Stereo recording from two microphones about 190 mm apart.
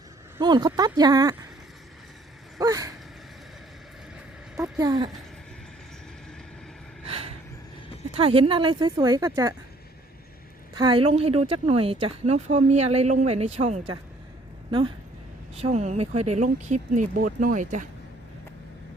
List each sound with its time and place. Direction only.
0.3 s speech: 20° right (ahead or behind)
2.6 s speech: 20° right (ahead or behind)
4.8 s speech: 20° right (ahead or behind)
7.0 s a sound: 30° right (ahead or behind)
8.1 s speech: 30° right (ahead or behind)
10.8 s speech: 25° right (ahead or behind); by 17.8 s 40° right (ahead or behind)